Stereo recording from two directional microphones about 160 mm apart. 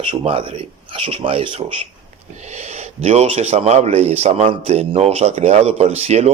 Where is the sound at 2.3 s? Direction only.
45° right (ahead or behind).